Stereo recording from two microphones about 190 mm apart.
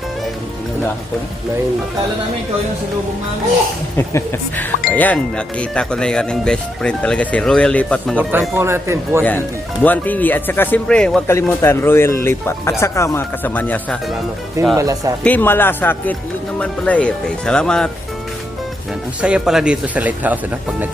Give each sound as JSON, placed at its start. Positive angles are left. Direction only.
{"t": 3.9, "sound": "speech", "side_deg": 10}
{"t": 8.2, "sound": "speech", "side_deg": -10}
{"t": 9.8, "sound": "speech", "side_deg": 10}
{"t": 14.8, "sound": "speech", "side_deg": -15}
{"t": 15.2, "sound": "speech", "side_deg": 10}
{"t": 19.2, "sound": "speech", "side_deg": -5}